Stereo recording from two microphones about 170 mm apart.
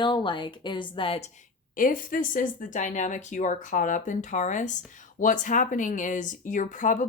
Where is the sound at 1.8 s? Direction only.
55° left (ahead or behind).